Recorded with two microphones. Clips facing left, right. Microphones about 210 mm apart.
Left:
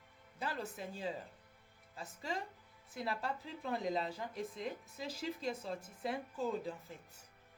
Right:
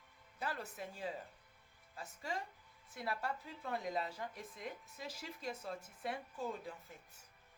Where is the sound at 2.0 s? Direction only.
20° left (ahead or behind).